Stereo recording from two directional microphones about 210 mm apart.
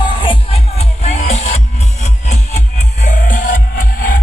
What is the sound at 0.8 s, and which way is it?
Music, 30° left (ahead or behind).